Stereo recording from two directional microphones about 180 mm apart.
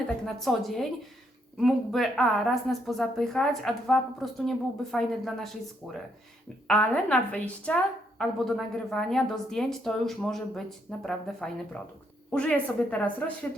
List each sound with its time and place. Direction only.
0.3 s a woman's voice: centre (ahead or behind)